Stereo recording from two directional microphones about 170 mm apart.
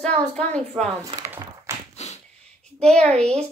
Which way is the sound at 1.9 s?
40° left (ahead or behind).